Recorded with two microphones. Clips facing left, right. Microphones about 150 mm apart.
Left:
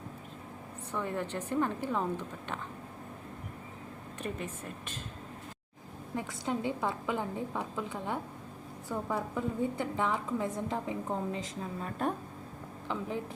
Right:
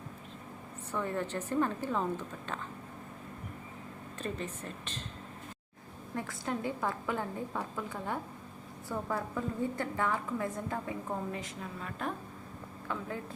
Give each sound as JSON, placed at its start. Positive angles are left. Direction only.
{"t": 0.9, "sound": "a woman's voice", "side_deg": 15}
{"t": 4.2, "sound": "a woman's voice", "side_deg": 10}
{"t": 6.1, "sound": "a woman's voice", "side_deg": 15}
{"t": 11.8, "sound": "a woman's voice", "side_deg": 35}